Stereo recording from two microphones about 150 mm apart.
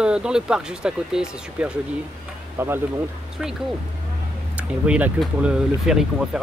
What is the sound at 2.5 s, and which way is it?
Speech, 15° right (ahead or behind).